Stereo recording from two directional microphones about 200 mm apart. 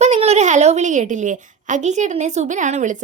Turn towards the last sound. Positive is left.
turn(degrees=-40)  # may be behind; listen again after turning